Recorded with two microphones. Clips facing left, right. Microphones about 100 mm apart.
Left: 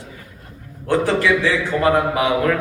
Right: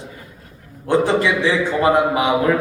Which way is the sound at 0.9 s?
20° right (ahead or behind).